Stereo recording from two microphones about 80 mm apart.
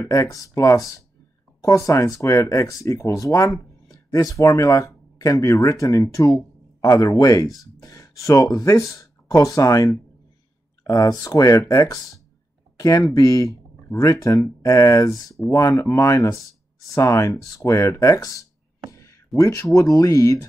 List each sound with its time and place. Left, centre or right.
0.1 s speech: left